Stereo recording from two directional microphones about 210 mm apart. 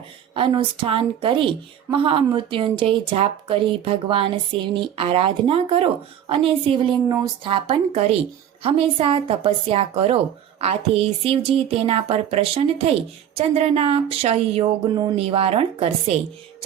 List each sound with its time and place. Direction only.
0.3 s a woman's voice: 25° right (ahead or behind)